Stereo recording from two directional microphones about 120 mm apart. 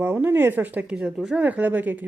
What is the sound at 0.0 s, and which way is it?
A woman's voice, 15° right (ahead or behind).